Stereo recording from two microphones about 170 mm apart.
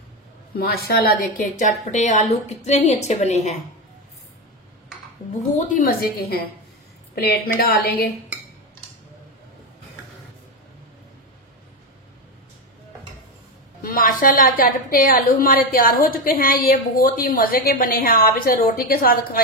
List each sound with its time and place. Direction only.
0.6 s a woman's voice: 65° left (ahead or behind); by 3.5 s 40° left (ahead or behind)
5.6 s a woman's voice: 50° left (ahead or behind)
7.2 s a woman's voice: 70° left (ahead or behind)
13.8 s a woman's voice: 55° left (ahead or behind)